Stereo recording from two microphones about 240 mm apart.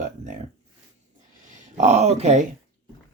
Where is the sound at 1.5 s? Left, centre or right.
Right.